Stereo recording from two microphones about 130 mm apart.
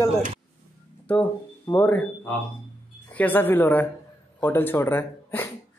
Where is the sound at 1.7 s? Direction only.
25° left (ahead or behind).